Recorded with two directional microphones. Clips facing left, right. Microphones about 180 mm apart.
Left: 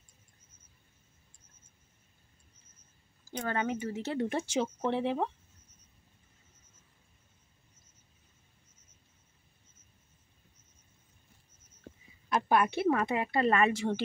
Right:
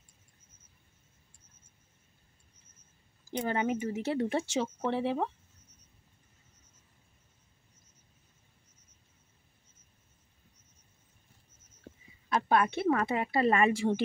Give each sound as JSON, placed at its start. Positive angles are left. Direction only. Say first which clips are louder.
{"t": 3.3, "sound": "speech", "louder": "right 2 dB", "side_deg": -15}
{"t": 4.4, "sound": "speech", "louder": "even", "side_deg": 0}
{"t": 12.3, "sound": "speech", "louder": "even", "side_deg": 5}